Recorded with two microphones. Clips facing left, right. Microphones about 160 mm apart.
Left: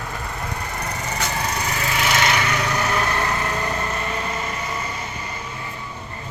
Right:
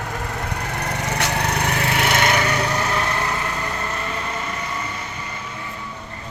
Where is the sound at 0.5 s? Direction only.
75° right (ahead or behind); by 2.5 s 45° right (ahead or behind).